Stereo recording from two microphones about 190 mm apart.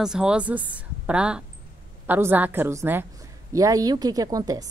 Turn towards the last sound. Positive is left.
turn(degrees=-20)  # may be behind; listen again after turning